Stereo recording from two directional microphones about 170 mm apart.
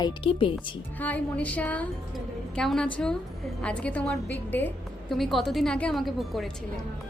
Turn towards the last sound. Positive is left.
turn(degrees=0)  # may be behind; listen again after turning